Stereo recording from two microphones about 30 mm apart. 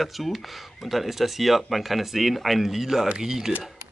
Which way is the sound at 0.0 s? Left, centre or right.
Centre.